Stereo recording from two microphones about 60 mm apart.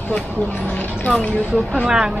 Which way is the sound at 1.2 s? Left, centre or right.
Left.